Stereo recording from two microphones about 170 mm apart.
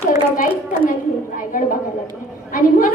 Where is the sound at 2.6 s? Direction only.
50° left (ahead or behind).